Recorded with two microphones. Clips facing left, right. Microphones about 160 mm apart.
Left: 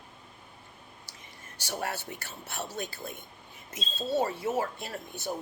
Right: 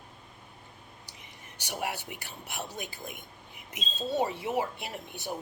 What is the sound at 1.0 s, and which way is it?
Speech, 20° right (ahead or behind).